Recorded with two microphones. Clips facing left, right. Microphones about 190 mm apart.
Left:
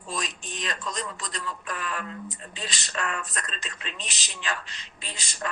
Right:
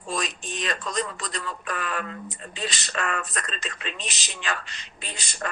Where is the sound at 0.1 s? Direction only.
75° right (ahead or behind).